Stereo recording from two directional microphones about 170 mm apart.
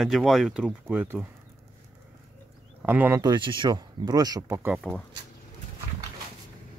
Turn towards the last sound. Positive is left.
turn(degrees=-15)  # may be behind; listen again after turning